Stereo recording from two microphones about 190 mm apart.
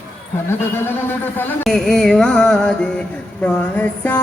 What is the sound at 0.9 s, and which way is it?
Music, 10° left (ahead or behind).